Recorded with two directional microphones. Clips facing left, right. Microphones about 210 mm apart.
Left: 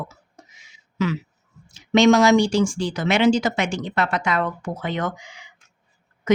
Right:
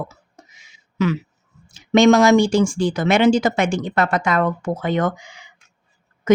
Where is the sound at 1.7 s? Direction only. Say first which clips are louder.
Right 2 dB; 50° right (ahead or behind).